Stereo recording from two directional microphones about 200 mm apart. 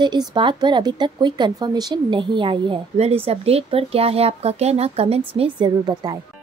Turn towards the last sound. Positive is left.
turn(degrees=-20)  # may be behind; listen again after turning